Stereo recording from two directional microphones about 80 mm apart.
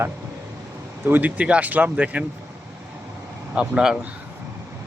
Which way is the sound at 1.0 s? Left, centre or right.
Right.